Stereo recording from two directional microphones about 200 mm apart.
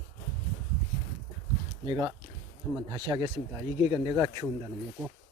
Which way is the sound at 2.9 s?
20° right (ahead or behind).